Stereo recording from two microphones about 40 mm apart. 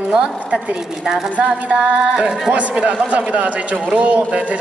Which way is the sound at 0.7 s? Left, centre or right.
Centre.